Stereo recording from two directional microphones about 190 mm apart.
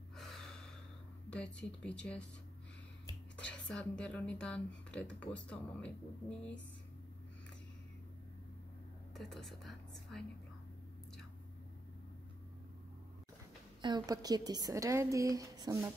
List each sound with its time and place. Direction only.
0.1 s gasp: centre (ahead or behind)
1.3 s speech: 5° left (ahead or behind)
3.3 s speech: 5° left (ahead or behind)
9.1 s a woman's voice: centre (ahead or behind)
13.7 s a woman's voice: 25° right (ahead or behind)